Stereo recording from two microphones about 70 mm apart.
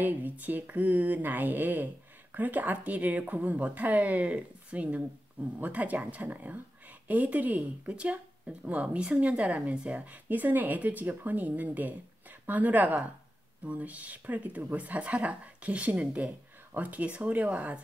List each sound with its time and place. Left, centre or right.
0.0 s speech: right